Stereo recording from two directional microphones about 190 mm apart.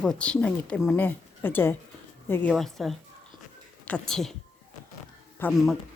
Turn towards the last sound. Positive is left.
turn(degrees=5)  # may be behind; listen again after turning